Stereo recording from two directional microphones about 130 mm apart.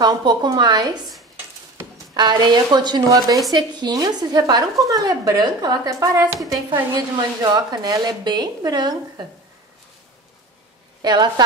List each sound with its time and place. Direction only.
0.0 s a woman's voice: 35° right (ahead or behind)
2.1 s a woman's voice: 35° right (ahead or behind)
11.0 s a woman's voice: 35° right (ahead or behind)